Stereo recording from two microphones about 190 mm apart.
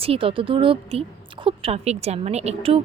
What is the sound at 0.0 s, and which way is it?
A woman's voice, 30° right (ahead or behind).